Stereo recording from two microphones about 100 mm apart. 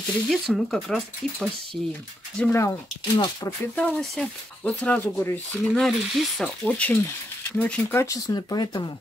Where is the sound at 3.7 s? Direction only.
15° left (ahead or behind).